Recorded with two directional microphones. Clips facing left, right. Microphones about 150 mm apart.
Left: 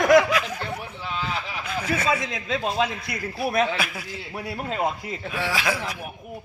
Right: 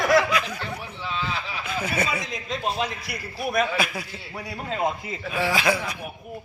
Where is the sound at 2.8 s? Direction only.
90° left.